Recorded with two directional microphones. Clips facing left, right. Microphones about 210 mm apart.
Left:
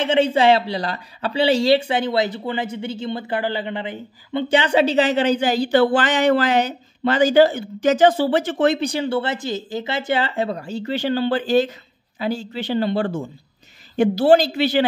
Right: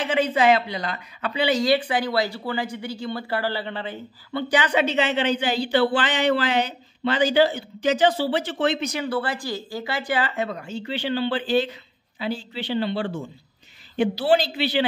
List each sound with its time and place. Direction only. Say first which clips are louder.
0.0 s speech: left 4 dB; 25° left (ahead or behind); by 14.9 s 45° left (ahead or behind)